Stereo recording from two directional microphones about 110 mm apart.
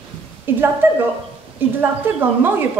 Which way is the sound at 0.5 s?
20° right (ahead or behind).